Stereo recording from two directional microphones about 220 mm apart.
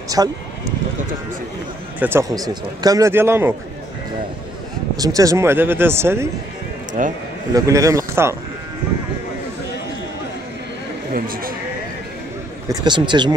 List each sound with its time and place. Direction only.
0.2 s speech: 15° right (ahead or behind)
2.0 s speech: 10° right (ahead or behind)
4.9 s speech: 15° right (ahead or behind)
7.0 s speech: 35° right (ahead or behind)
7.5 s speech: 15° right (ahead or behind)
11.1 s speech: 40° right (ahead or behind)
12.6 s speech: 20° right (ahead or behind)